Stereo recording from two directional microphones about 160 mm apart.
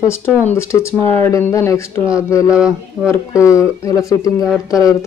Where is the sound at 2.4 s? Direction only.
5° right (ahead or behind).